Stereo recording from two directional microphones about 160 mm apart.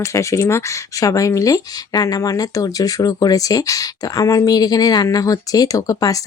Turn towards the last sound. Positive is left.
turn(degrees=20)  # may be behind; listen again after turning